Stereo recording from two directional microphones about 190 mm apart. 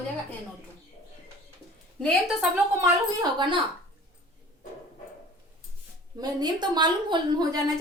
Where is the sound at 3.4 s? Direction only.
25° right (ahead or behind).